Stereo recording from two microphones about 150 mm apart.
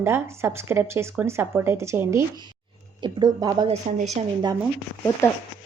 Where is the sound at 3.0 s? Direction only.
25° right (ahead or behind).